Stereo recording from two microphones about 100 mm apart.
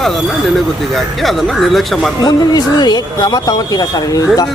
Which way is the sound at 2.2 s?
40° left (ahead or behind).